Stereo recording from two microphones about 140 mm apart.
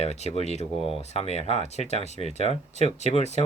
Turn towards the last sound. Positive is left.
turn(degrees=50)  # may be behind; listen again after turning